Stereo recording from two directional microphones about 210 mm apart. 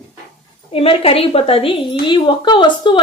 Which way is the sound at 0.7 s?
25° left (ahead or behind).